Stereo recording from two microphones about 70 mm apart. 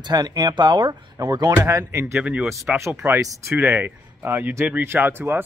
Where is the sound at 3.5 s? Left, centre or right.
Right.